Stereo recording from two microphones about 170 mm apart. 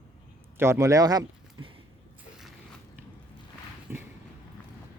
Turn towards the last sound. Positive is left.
turn(degrees=-15)  # may be behind; listen again after turning